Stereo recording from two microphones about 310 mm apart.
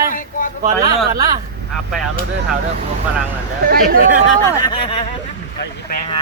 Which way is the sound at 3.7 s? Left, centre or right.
Right.